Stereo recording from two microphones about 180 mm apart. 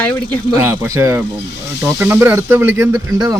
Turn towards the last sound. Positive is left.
turn(degrees=-20)  # may be behind; listen again after turning